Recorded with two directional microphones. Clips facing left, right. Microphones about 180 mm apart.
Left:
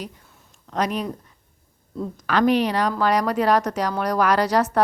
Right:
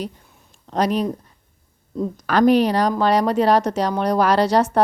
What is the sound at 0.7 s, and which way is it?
Speech, 35° right (ahead or behind).